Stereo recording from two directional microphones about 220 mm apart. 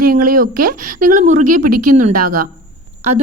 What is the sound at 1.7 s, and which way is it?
Speech, 90° right.